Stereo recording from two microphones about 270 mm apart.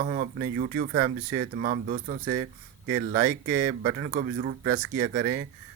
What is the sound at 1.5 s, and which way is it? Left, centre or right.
Speech, right.